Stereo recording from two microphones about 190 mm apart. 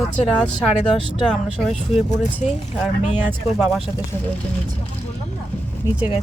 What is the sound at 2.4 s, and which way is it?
Speech, 35° left (ahead or behind).